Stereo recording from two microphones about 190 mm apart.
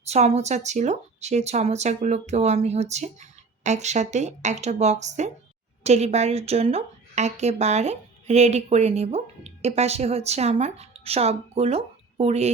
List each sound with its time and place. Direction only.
0.1 s a woman's voice: 35° right (ahead or behind)